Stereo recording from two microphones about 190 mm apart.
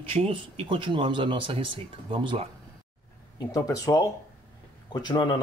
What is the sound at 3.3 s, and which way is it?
Speech, 20° left (ahead or behind).